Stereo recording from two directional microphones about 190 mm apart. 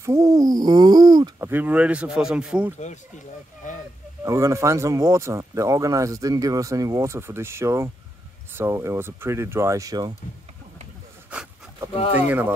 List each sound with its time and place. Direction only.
0.0 s speech: 15° right (ahead or behind)
3.6 s a sound: 40° left (ahead or behind)
4.2 s speech: 15° right (ahead or behind)
11.2 s a sound: 5° right (ahead or behind)
11.9 s speech: 30° left (ahead or behind)
12.3 s speech: 10° right (ahead or behind)